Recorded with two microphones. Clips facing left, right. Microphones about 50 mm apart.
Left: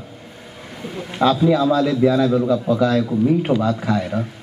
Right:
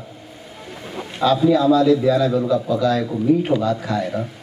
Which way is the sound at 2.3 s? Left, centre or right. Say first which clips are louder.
Left 1 dB; centre.